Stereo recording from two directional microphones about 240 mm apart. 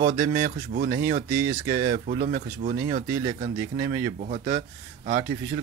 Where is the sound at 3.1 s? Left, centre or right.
Centre.